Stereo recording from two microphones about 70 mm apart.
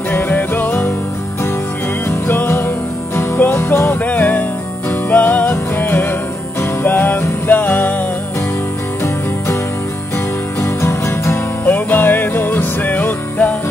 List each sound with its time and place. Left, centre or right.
0.1 s music: left
2.0 s music: left
10.6 s music: left
11.6 s music: left